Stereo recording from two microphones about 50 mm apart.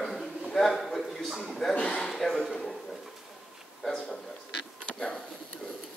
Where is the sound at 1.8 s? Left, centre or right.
Centre.